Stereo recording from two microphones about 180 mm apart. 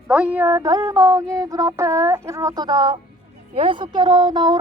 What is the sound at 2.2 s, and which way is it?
Speech, 15° right (ahead or behind).